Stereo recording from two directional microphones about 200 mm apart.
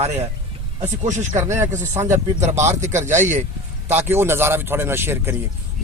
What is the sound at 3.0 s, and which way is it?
Speech, 35° right (ahead or behind).